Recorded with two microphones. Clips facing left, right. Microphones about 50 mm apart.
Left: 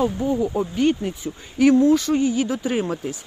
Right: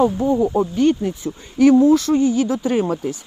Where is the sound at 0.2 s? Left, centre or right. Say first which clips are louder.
Right 4 dB; right.